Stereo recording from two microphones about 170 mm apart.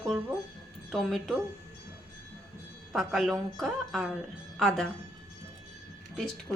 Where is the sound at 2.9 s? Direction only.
Centre (ahead or behind).